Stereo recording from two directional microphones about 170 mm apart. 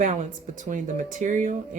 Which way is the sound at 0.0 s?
50° right (ahead or behind).